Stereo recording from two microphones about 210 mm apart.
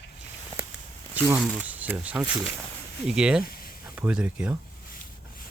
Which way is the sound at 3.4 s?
45° left (ahead or behind).